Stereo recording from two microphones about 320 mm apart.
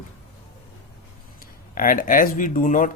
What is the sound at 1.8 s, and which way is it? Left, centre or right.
Speech, left.